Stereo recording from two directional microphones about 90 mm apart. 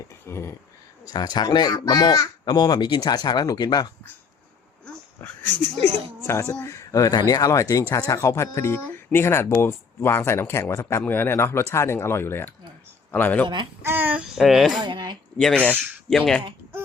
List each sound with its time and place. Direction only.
0.3 s speech: 30° left (ahead or behind)
1.0 s speech: 50° left (ahead or behind)
5.2 s speech: 20° left (ahead or behind)
11.0 s speech: 20° left (ahead or behind)
13.8 s speech: 20° right (ahead or behind)
14.3 s speech: centre (ahead or behind)
14.8 s speech: 60° right (ahead or behind)
15.4 s speech: 10° left (ahead or behind)